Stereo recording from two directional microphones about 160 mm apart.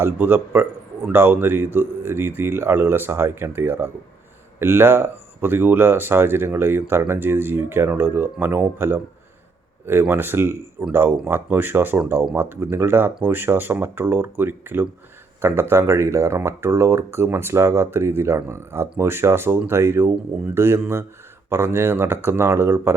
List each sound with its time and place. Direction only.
0.0 s speech: 15° right (ahead or behind)